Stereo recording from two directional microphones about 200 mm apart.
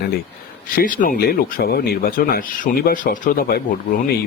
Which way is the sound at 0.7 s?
45° left (ahead or behind).